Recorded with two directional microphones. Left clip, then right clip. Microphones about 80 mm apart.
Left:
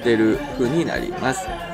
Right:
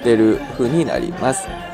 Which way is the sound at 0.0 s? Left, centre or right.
Right.